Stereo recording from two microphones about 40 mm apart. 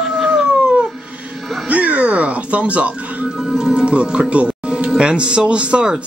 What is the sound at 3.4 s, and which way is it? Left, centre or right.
A man's voice, centre.